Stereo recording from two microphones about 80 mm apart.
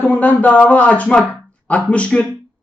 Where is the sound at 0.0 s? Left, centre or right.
Centre.